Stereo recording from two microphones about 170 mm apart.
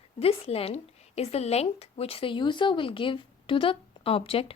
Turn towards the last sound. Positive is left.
turn(degrees=35)  # may be behind; listen again after turning